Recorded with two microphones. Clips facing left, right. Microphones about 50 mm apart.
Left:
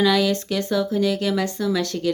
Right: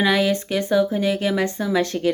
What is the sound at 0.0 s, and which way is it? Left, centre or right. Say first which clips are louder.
Speech: even; right.